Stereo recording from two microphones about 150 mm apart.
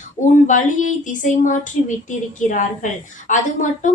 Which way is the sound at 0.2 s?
55° left (ahead or behind).